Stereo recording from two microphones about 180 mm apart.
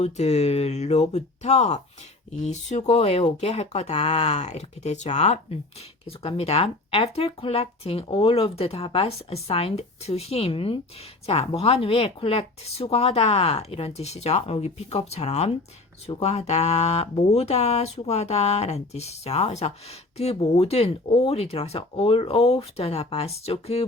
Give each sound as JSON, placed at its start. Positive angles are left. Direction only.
{"t": 0.0, "sound": "speech", "side_deg": 35}